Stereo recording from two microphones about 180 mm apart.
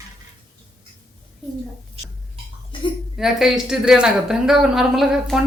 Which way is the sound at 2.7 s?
25° left (ahead or behind).